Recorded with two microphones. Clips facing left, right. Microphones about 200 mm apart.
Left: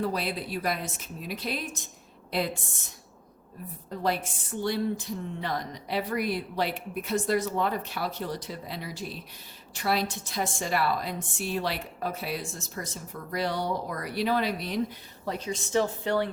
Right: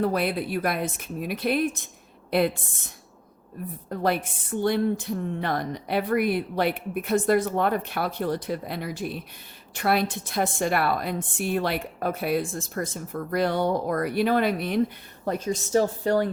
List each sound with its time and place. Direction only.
0.0 s a woman's voice: 55° right (ahead or behind)
3.8 s a woman's voice: 55° right (ahead or behind); by 16.3 s 40° right (ahead or behind)